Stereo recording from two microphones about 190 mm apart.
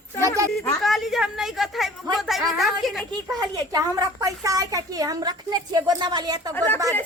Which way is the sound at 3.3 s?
20° right (ahead or behind).